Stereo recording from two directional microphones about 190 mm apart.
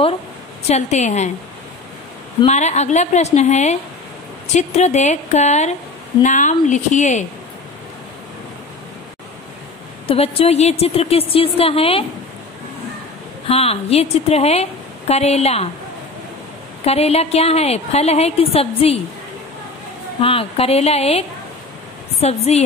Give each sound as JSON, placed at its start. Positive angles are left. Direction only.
{"t": 0.7, "sound": "a woman's voice", "side_deg": 35}
{"t": 2.4, "sound": "a woman's voice", "side_deg": 35}
{"t": 10.0, "sound": "a woman's voice", "side_deg": 30}
{"t": 13.5, "sound": "a woman's voice", "side_deg": 30}
{"t": 16.8, "sound": "a woman's voice", "side_deg": 35}
{"t": 20.2, "sound": "a woman's voice", "side_deg": 30}